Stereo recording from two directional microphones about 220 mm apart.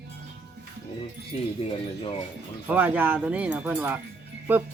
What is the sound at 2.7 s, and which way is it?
Speech, 5° right (ahead or behind).